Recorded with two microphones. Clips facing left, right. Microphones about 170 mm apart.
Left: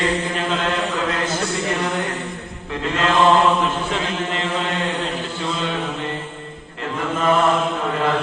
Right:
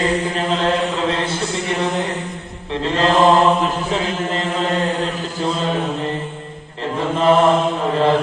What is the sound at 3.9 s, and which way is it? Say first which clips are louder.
Chant: right 3 dB; 40° right (ahead or behind).